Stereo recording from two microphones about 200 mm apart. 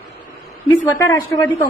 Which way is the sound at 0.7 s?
15° left (ahead or behind).